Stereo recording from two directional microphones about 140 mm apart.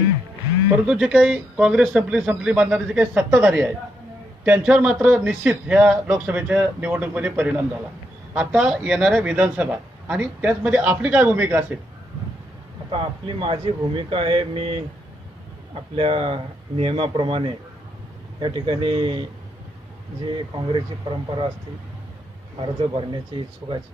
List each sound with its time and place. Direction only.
0.9 s a man's voice: 5° right (ahead or behind)
12.9 s speech: 40° right (ahead or behind)
16.0 s speech: 40° right (ahead or behind)
20.3 s speech: 35° right (ahead or behind)